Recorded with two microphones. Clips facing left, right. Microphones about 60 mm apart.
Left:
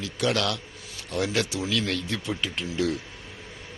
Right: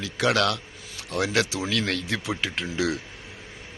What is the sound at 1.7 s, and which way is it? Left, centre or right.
Speech, right.